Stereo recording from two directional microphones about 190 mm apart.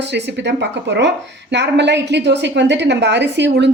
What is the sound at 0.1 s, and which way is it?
A woman's voice, 70° right (ahead or behind).